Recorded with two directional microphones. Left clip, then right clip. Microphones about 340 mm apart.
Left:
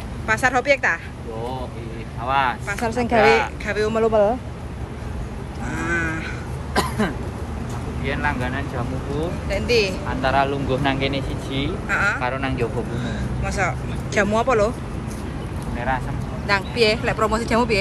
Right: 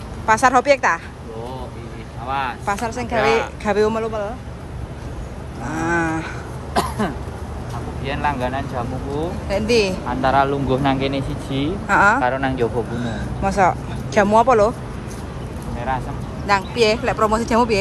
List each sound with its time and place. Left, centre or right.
0.3 s speech: centre
2.2 s speech: centre
5.7 s a sound: centre
6.7 s cough: centre
8.0 s speech: right
9.5 s speech: centre
10.0 s speech: right
13.0 s speech: centre
16.4 s speech: centre